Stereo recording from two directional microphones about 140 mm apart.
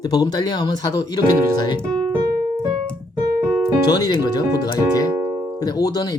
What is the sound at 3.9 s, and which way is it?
Speech, 30° left (ahead or behind).